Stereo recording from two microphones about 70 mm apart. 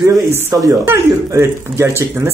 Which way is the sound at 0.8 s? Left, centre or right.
Right.